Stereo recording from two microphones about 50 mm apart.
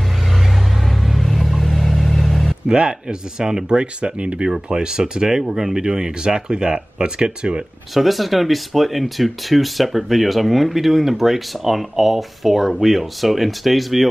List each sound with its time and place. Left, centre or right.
1.0 s vehicle: centre
2.7 s speech: centre
7.9 s speech: centre